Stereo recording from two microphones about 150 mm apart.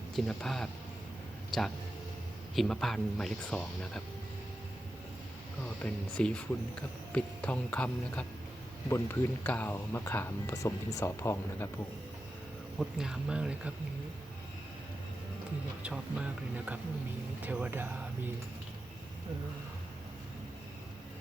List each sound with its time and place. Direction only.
0.2 s speech: centre (ahead or behind)
5.6 s speech: 10° left (ahead or behind)
12.8 s speech: 5° right (ahead or behind)
15.8 s speech: 5° right (ahead or behind)